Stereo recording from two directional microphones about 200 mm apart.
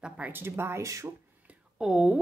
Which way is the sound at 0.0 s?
10° right (ahead or behind).